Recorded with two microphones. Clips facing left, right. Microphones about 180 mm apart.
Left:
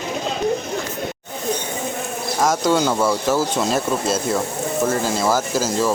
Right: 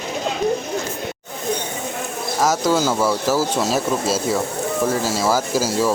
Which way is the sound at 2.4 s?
5° right (ahead or behind).